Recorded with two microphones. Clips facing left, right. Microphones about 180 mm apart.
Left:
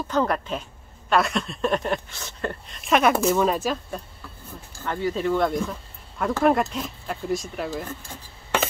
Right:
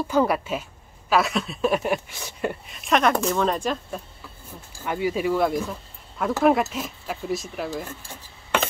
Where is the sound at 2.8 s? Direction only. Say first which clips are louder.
Left 1 dB; 5° left (ahead or behind).